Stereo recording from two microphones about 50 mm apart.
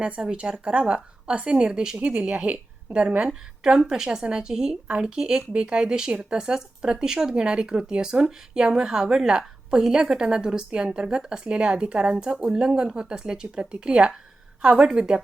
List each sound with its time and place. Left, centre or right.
0.0 s a woman's voice: centre